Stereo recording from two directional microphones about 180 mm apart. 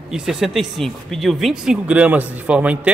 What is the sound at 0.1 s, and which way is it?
Speech, 5° right (ahead or behind).